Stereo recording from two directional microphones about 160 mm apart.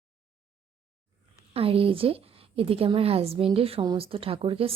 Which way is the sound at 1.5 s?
35° right (ahead or behind).